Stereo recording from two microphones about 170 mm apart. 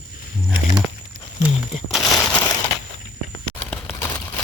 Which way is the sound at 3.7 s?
10° left (ahead or behind).